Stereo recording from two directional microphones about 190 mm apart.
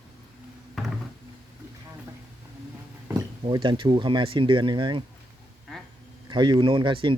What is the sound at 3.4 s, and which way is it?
Speech, 25° right (ahead or behind).